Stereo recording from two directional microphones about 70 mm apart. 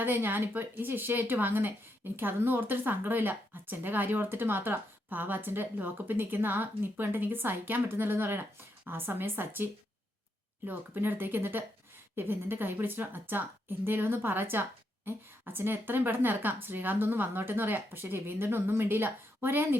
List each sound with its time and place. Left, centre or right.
0.0 s a woman's voice: right
10.7 s a woman's voice: right